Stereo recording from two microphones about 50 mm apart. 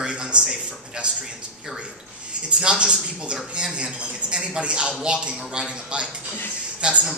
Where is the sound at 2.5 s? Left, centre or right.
Centre.